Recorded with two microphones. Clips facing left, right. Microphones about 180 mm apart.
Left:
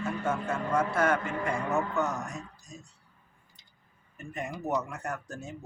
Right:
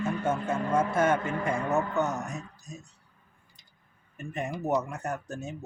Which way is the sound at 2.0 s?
20° right (ahead or behind).